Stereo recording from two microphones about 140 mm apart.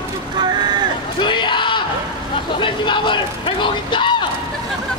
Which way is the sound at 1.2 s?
35° left (ahead or behind).